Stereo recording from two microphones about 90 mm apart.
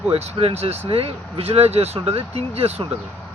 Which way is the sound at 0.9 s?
90° right.